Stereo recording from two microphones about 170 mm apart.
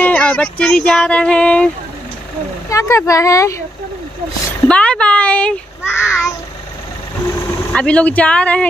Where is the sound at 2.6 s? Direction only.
20° left (ahead or behind).